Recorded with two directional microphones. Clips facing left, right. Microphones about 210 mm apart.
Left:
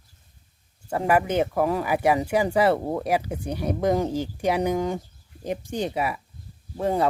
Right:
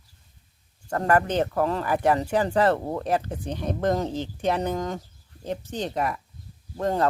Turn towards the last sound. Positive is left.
turn(degrees=10)  # may be behind; listen again after turning